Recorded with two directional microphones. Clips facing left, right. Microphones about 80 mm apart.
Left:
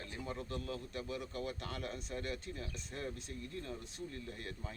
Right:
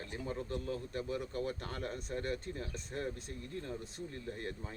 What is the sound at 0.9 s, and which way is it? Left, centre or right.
A man's voice, right.